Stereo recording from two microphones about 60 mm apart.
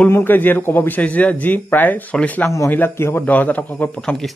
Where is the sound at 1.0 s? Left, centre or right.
Left.